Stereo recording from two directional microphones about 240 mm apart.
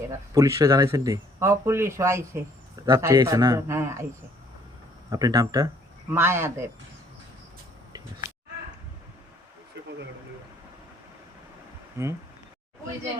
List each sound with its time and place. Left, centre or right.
0.3 s speech: centre
5.1 s speech: centre
12.0 s speech: centre